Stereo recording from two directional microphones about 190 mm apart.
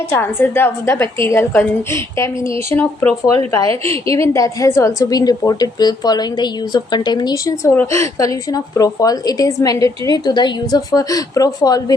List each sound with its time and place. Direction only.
0.2 s a woman's voice: 10° left (ahead or behind)